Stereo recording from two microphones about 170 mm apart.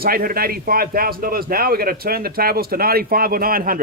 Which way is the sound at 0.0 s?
60° right (ahead or behind).